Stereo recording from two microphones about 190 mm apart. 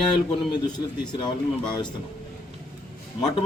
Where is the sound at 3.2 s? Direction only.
25° left (ahead or behind).